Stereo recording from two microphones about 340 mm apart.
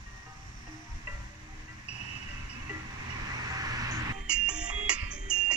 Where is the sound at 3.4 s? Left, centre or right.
Centre.